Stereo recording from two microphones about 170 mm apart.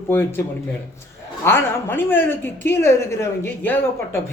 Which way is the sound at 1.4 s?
15° left (ahead or behind).